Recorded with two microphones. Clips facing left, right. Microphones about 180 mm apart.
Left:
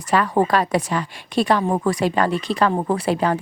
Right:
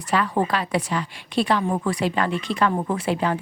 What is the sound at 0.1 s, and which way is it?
A woman's voice, 45° left (ahead or behind).